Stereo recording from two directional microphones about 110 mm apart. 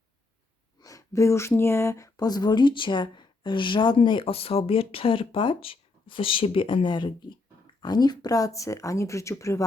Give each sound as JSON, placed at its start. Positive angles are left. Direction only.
{"t": 0.8, "sound": "speech", "side_deg": 30}